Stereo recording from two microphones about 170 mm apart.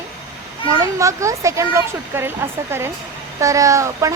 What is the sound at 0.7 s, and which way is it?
Speech, 15° right (ahead or behind).